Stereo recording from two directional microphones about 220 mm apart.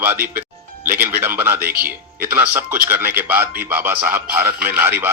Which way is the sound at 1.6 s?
40° right (ahead or behind).